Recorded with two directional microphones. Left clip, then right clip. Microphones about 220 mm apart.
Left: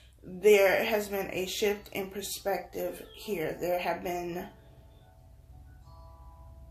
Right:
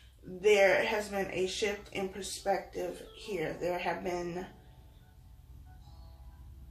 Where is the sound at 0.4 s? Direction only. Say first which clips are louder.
Left 3 dB; 45° left (ahead or behind).